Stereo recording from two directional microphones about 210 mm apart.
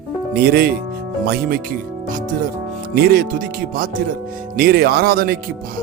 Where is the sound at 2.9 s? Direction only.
45° right (ahead or behind).